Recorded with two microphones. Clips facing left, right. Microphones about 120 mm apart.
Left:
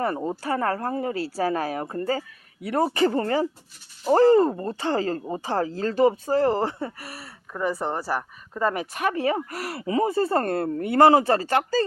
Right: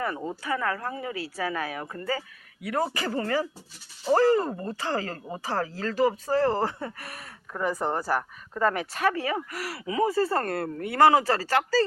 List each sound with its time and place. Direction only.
0.2 s speech: 30° left (ahead or behind)